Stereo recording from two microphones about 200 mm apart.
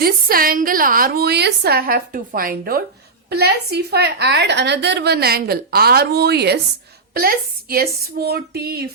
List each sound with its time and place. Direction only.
0.0 s a woman's voice: 45° right (ahead or behind)